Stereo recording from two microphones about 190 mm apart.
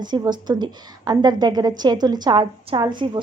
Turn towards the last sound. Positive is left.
turn(degrees=-25)  # may be behind; listen again after turning